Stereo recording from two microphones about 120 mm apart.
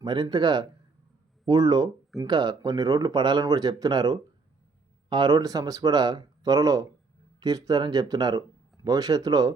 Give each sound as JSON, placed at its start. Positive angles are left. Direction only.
{"t": 0.0, "sound": "speech", "side_deg": -40}